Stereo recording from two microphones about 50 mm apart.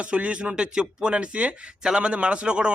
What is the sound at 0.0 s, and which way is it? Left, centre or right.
Speech, right.